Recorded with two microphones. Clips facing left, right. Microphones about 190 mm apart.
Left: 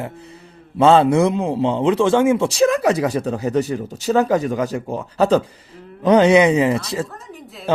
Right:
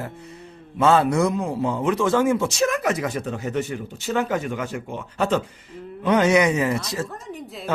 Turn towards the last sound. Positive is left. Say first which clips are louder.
# left 5 dB
turn(degrees=25)  # may be behind; listen again after turning